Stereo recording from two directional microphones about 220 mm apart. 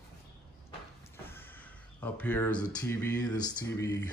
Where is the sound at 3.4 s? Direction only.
20° left (ahead or behind).